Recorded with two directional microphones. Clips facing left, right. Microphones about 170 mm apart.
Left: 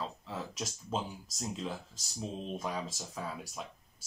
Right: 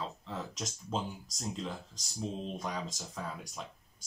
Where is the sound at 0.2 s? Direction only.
5° left (ahead or behind).